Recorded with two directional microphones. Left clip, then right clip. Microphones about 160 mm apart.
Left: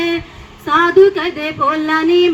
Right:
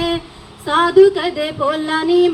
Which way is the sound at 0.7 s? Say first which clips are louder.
Left 1 dB; 40° left (ahead or behind).